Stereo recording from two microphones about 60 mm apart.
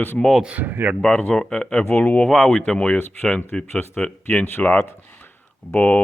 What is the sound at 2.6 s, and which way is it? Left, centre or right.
Speech, centre.